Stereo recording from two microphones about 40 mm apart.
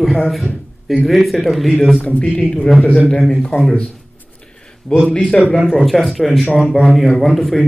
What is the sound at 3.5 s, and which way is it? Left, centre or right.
Speech, left.